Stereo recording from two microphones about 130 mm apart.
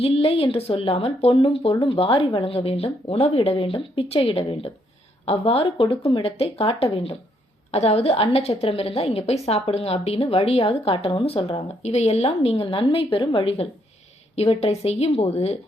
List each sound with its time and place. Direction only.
0.0 s speech: 45° left (ahead or behind)
11.8 s speech: 60° left (ahead or behind)